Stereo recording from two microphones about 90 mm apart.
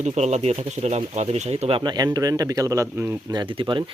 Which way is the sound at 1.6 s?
80° right.